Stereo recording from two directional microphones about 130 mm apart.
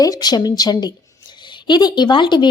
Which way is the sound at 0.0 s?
30° left (ahead or behind).